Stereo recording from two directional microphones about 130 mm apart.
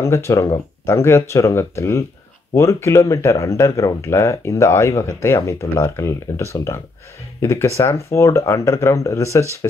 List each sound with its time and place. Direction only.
0.0 s speech: 20° left (ahead or behind)